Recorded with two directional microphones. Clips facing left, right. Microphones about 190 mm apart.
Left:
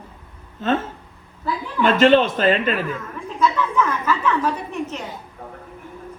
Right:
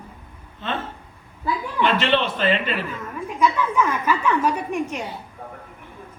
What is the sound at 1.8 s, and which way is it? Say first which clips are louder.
A man's voice: left 7 dB; 45° left (ahead or behind).